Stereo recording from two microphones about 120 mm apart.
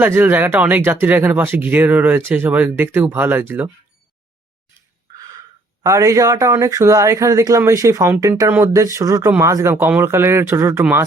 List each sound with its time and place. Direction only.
0.0 s speech: 15° right (ahead or behind)
5.1 s speech: 30° right (ahead or behind)